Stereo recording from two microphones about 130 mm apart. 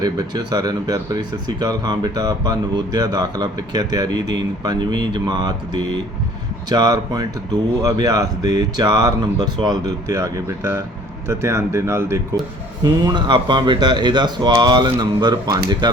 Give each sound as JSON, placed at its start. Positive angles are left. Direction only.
{"t": 0.0, "sound": "speech", "side_deg": -30}
{"t": 12.8, "sound": "speech", "side_deg": -35}